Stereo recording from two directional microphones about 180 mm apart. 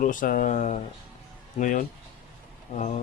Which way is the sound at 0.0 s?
45° left (ahead or behind).